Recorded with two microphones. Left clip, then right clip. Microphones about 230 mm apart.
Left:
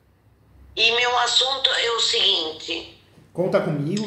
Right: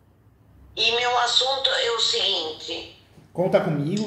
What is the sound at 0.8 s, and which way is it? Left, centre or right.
A man's voice, left.